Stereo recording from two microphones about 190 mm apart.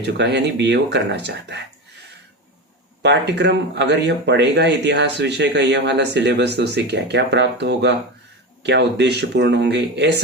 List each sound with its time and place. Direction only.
0.0 s speech: 65° right (ahead or behind)
3.0 s speech: 65° right (ahead or behind)